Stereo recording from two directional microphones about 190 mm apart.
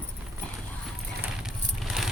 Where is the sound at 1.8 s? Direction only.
Centre (ahead or behind).